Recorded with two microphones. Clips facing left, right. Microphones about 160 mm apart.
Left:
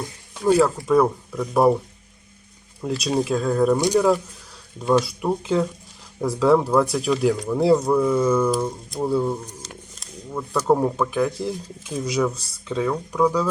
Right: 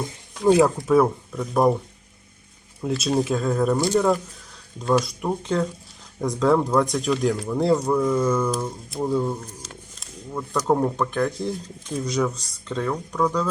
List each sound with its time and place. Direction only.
0.0 s speech: 20° right (ahead or behind)
0.8 s speech: centre (ahead or behind)
2.8 s speech: centre (ahead or behind)
3.8 s speech: 15° left (ahead or behind)
5.0 s speech: 5° left (ahead or behind)
10.0 s a sound: centre (ahead or behind)
10.7 s speech: 5° left (ahead or behind)